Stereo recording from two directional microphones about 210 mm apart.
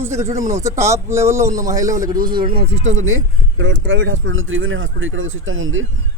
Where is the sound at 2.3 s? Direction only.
45° right (ahead or behind).